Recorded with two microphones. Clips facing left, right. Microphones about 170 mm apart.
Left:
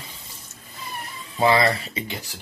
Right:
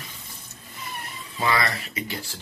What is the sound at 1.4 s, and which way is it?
Speech, 30° left (ahead or behind).